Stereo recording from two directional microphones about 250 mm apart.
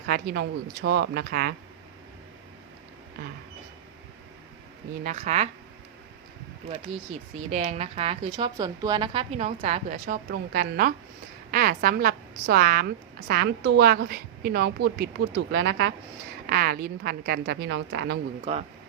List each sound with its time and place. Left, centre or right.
0.1 s a woman's voice: right
5.0 s a woman's voice: right
7.3 s a woman's voice: right
18.5 s a woman's voice: right